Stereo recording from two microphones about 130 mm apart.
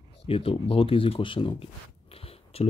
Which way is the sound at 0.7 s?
45° left (ahead or behind).